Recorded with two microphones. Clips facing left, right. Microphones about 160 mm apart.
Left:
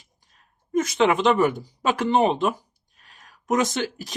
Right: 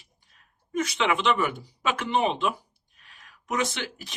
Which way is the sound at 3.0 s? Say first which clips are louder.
Left 3 dB; 40° left (ahead or behind).